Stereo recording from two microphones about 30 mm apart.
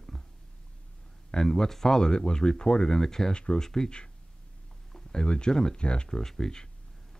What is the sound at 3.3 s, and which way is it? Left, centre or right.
Speech, left.